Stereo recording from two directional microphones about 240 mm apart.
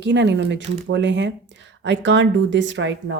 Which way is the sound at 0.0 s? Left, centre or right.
Right.